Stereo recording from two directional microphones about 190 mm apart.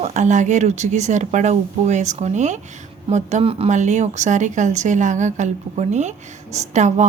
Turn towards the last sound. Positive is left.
turn(degrees=-40)  # may be behind; listen again after turning